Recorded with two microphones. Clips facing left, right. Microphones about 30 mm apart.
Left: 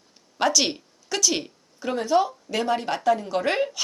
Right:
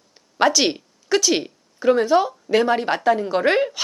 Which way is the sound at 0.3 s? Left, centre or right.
Right.